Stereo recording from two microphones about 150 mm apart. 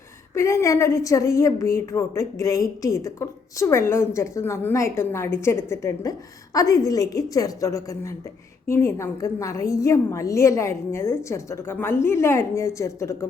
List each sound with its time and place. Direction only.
0.3 s speech: 20° left (ahead or behind)